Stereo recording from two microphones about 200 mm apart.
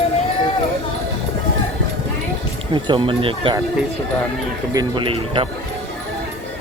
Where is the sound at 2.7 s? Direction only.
25° right (ahead or behind).